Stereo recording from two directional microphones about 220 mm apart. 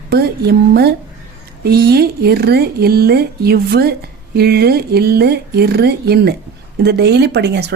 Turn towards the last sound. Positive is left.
turn(degrees=-50)  # may be behind; listen again after turning